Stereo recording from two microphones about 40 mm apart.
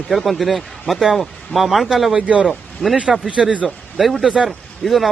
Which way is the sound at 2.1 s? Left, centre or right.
Right.